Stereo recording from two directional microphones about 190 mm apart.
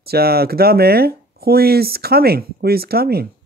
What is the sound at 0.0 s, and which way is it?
Speech, 55° right (ahead or behind).